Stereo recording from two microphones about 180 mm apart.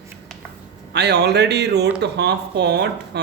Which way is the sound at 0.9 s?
70° right (ahead or behind).